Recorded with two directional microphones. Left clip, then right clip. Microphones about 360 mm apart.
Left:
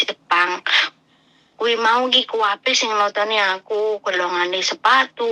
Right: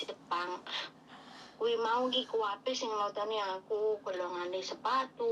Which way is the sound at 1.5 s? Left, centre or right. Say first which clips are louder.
Left 14 dB; left.